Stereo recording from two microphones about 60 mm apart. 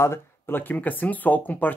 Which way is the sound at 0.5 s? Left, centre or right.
Left.